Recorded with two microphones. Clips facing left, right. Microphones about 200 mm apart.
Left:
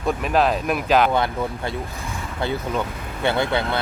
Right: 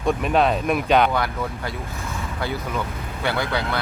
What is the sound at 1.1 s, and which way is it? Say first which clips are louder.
Speech: left 3 dB; 25° left (ahead or behind).